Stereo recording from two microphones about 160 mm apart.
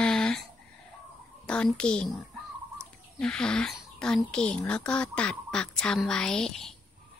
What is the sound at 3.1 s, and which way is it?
Speech, 5° left (ahead or behind).